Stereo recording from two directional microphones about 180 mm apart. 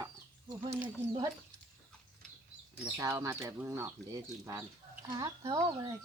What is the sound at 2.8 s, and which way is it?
Speech, 20° right (ahead or behind).